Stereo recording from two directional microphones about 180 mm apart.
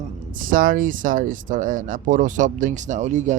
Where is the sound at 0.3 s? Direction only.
50° right (ahead or behind).